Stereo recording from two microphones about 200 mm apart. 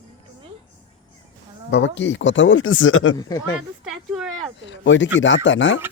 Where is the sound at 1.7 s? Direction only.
65° left (ahead or behind); by 3.2 s 85° left.